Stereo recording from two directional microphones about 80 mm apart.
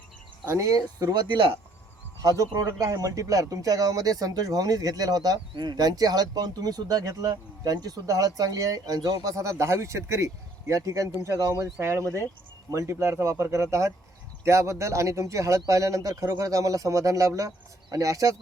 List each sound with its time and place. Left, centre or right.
0.6 s speech: right
2.2 s speech: right